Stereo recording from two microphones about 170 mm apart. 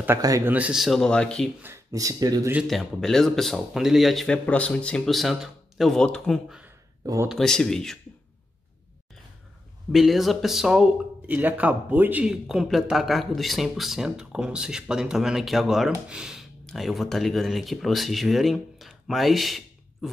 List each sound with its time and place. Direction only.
0.0 s speech: 15° right (ahead or behind)
0.6 s speech: 5° right (ahead or behind)
1.6 s speech: 15° right (ahead or behind)
2.5 s speech: centre (ahead or behind)
9.9 s speech: centre (ahead or behind)